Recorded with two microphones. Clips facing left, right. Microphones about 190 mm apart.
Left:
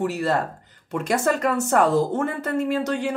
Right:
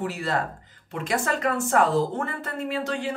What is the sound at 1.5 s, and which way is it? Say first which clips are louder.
A woman's voice: even; 40° left (ahead or behind).